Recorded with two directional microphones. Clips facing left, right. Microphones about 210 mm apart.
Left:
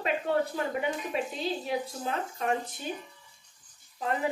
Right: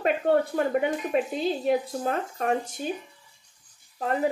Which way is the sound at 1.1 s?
55° right (ahead or behind).